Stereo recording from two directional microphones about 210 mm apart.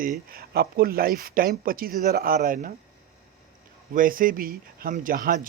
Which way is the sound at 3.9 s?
40° right (ahead or behind).